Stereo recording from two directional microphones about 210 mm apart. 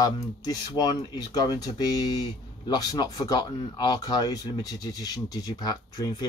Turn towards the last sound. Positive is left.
turn(degrees=20)  # may be behind; listen again after turning